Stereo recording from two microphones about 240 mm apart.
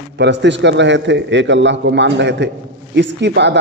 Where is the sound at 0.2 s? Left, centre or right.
Right.